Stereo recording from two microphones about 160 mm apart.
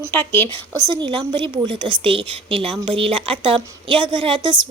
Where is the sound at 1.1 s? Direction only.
30° right (ahead or behind).